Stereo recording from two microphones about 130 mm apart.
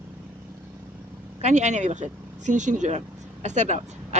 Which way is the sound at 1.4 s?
65° right (ahead or behind).